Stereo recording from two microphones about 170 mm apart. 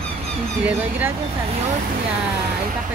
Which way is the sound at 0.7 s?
10° right (ahead or behind).